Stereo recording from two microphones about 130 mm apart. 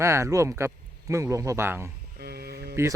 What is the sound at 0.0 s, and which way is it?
A man's voice, 20° right (ahead or behind).